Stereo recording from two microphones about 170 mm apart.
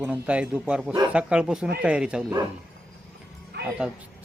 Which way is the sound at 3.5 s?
70° right (ahead or behind).